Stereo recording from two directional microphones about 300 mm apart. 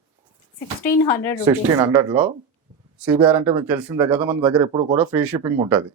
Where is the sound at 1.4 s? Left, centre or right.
Centre.